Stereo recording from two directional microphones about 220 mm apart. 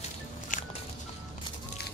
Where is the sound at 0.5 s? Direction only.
35° left (ahead or behind).